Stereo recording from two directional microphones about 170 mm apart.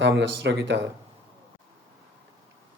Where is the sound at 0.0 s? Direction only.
90° right.